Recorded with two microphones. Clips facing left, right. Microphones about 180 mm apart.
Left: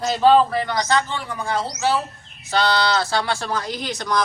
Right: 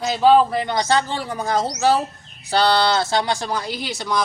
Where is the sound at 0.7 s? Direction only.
30° right (ahead or behind).